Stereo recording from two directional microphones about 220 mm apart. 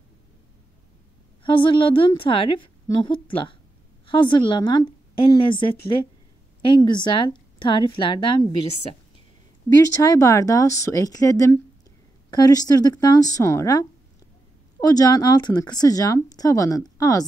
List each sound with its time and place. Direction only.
1.4 s a woman's voice: 20° left (ahead or behind)
10.0 s speech: 15° left (ahead or behind)